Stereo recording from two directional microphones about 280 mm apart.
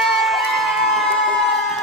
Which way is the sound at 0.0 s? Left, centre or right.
Centre.